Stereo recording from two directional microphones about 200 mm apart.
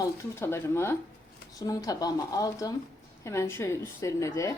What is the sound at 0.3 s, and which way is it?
A woman's voice, 10° left (ahead or behind).